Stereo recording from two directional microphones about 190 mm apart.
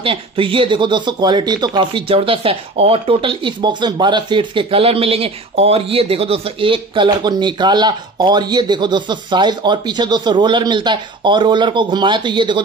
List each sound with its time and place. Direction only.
0.0 s speech: 30° right (ahead or behind)